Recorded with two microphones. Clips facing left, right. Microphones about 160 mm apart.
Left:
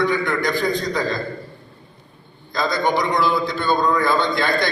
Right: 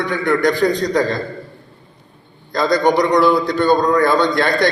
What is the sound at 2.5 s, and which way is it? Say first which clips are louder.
A man's voice: right 6 dB; 70° right (ahead or behind).